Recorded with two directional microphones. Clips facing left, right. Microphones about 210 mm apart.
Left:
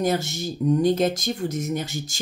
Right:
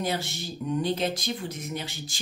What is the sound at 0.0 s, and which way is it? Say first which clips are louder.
Speech: left 7 dB; 45° left (ahead or behind).